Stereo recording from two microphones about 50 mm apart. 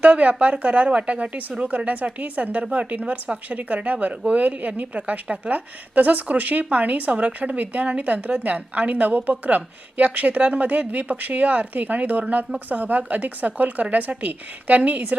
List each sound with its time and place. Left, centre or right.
0.0 s a woman's voice: right